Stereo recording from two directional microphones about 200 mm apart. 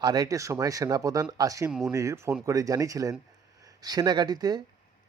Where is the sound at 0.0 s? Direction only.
20° right (ahead or behind).